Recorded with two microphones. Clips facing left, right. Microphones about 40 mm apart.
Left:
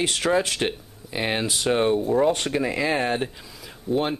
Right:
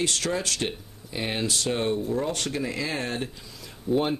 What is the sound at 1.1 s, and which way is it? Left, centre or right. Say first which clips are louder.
Speech: left 4 dB; left.